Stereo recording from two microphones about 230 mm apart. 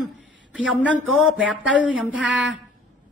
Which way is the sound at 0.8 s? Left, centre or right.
Centre.